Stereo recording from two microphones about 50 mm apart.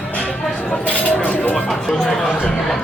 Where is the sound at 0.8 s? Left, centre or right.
Left.